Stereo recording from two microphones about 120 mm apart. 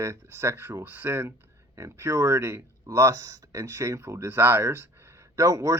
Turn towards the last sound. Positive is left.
turn(degrees=-25)  # may be behind; listen again after turning